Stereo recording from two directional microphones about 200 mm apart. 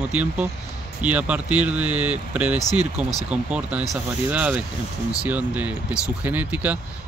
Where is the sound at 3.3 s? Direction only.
5° right (ahead or behind).